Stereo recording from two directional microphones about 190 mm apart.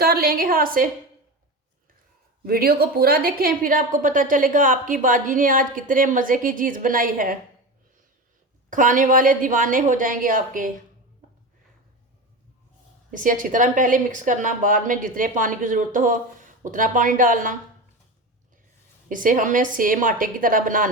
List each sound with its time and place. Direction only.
0.0 s speech: 55° right (ahead or behind)
2.4 s speech: 50° right (ahead or behind)
8.7 s speech: 45° right (ahead or behind)
13.1 s speech: 45° right (ahead or behind)
19.0 s speech: 45° right (ahead or behind)